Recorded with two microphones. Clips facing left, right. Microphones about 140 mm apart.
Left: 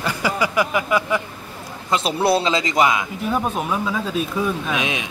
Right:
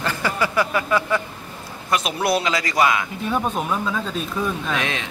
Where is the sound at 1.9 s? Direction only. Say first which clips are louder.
Left 3 dB; 30° left (ahead or behind).